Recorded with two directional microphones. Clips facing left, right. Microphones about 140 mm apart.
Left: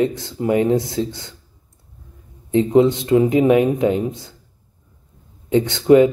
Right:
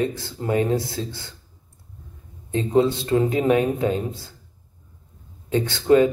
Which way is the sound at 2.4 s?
20° left (ahead or behind).